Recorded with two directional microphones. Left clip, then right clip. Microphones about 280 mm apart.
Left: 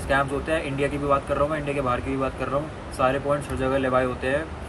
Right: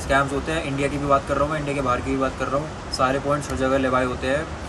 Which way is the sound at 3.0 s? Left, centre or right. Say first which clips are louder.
Right 1 dB; centre.